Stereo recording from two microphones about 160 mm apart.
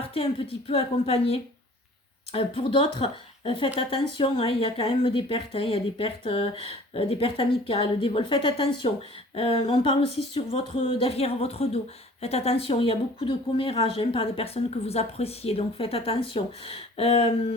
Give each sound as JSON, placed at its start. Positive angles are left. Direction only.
{"t": 0.0, "sound": "speech", "side_deg": 35}